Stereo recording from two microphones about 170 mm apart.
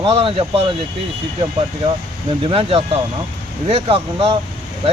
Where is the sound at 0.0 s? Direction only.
30° right (ahead or behind).